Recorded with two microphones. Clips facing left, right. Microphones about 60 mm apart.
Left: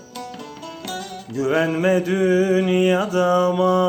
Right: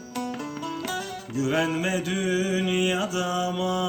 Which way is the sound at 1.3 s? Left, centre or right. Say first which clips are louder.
Left 5 dB; left.